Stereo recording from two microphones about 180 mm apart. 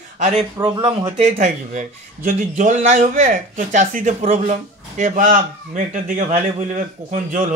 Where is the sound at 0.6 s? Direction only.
20° right (ahead or behind).